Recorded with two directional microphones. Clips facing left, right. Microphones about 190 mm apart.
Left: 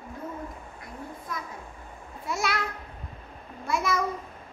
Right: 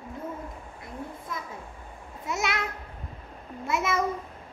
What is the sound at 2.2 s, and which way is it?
Babbling, 20° right (ahead or behind).